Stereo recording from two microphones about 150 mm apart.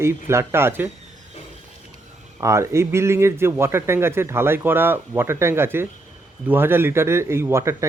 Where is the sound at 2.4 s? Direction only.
20° right (ahead or behind).